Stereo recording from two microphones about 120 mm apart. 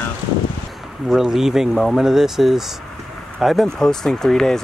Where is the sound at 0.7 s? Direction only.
5° right (ahead or behind).